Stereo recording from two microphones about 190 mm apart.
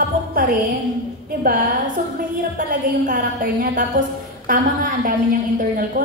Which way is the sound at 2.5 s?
45° right (ahead or behind).